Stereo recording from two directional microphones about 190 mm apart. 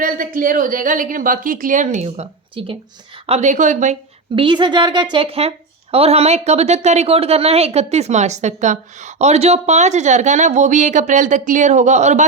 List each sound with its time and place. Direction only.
0.0 s a woman's voice: 45° right (ahead or behind)
4.4 s speech: 25° right (ahead or behind)